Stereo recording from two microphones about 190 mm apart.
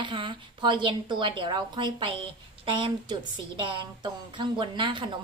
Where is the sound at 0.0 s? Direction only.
25° right (ahead or behind).